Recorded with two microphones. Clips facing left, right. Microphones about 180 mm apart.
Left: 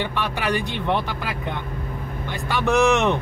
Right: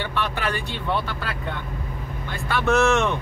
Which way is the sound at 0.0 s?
15° left (ahead or behind).